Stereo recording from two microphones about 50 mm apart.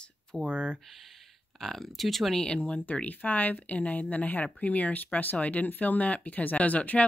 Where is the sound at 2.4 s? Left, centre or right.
Centre.